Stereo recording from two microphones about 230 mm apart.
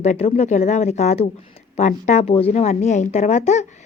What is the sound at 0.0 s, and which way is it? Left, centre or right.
Speech, left.